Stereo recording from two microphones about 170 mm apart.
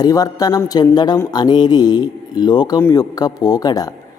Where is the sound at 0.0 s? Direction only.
20° left (ahead or behind).